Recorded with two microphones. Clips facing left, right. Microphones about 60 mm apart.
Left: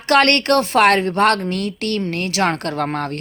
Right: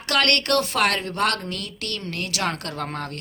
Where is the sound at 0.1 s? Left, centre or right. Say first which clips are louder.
Left 7 dB; left.